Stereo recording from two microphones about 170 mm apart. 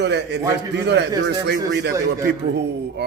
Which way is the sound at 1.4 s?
90° right.